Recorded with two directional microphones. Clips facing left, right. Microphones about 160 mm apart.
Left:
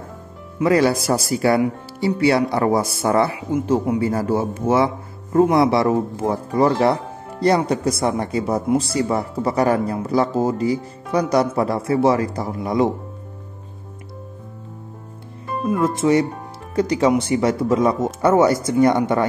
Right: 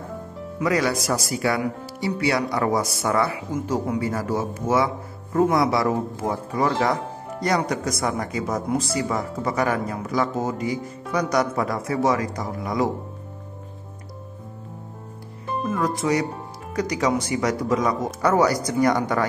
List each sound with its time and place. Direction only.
0.6 s speech: 30° left (ahead or behind)
15.6 s speech: 25° left (ahead or behind)